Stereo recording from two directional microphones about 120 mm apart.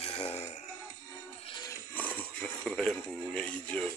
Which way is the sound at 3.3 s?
10° left (ahead or behind).